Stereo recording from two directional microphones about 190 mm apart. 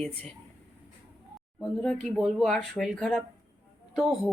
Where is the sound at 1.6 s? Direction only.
5° left (ahead or behind).